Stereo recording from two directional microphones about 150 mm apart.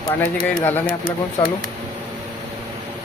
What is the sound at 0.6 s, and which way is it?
Speech, 15° left (ahead or behind).